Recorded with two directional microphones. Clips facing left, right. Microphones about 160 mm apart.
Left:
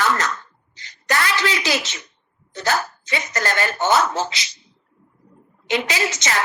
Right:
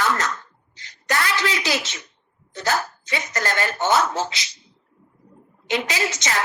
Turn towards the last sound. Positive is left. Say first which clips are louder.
# left 2 dB
turn(degrees=85)